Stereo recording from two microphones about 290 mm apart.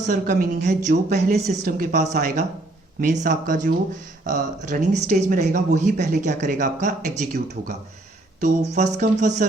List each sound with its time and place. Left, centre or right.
0.0 s speech: right